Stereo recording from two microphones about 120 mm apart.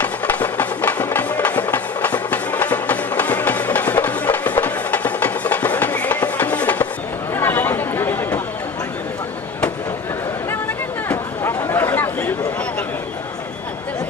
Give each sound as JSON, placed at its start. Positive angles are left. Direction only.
{"t": 0.0, "sound": "music", "side_deg": 15}
{"t": 7.3, "sound": "chatter", "side_deg": 20}
{"t": 11.1, "sound": "a sound", "side_deg": 20}